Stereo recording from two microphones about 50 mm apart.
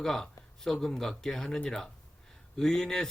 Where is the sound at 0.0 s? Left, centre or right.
Centre.